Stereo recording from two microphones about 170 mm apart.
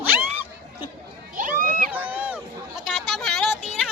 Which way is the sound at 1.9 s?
10° right (ahead or behind).